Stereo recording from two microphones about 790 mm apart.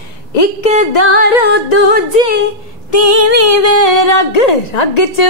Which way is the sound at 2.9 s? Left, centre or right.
Left.